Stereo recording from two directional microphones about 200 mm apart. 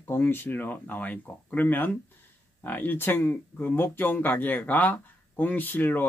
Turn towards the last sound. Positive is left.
turn(degrees=10)  # may be behind; listen again after turning